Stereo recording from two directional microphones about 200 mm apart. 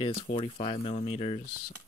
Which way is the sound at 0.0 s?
30° left (ahead or behind).